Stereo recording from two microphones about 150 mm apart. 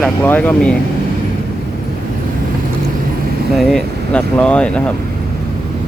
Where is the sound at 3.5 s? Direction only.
Centre (ahead or behind).